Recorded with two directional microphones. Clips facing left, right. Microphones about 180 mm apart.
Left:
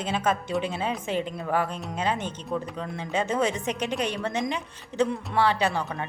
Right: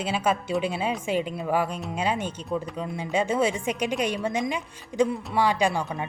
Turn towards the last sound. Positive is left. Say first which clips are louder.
# right 2 dB
turn(degrees=-15)  # may be behind; listen again after turning